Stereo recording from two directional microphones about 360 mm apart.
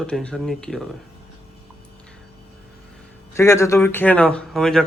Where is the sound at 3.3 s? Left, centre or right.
Centre.